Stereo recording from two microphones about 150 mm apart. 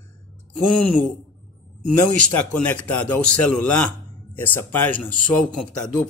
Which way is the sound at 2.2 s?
10° left (ahead or behind).